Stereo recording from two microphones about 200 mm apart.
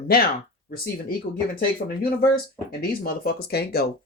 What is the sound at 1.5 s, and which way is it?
Speech, 45° left (ahead or behind).